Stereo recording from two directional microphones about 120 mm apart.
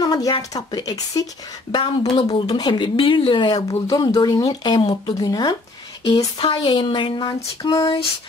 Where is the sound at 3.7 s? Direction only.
30° left (ahead or behind).